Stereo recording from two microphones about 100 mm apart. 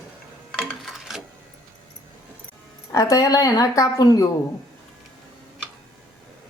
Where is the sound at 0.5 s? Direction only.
Centre (ahead or behind).